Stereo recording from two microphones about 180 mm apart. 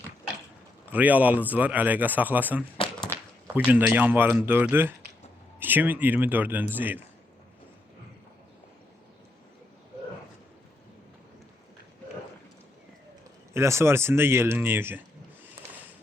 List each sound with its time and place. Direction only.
0.9 s speech: 10° right (ahead or behind)
2.7 s a sound: 30° left (ahead or behind)
3.4 s speech: 10° right (ahead or behind)
13.5 s speech: 15° right (ahead or behind)